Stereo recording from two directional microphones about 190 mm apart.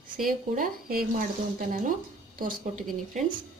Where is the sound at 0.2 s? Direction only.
45° right (ahead or behind).